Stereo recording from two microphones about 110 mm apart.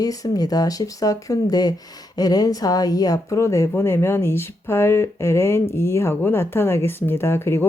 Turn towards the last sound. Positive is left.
turn(degrees=20)  # may be behind; listen again after turning